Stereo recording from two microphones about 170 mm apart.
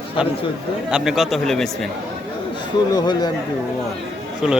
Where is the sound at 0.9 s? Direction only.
5° right (ahead or behind).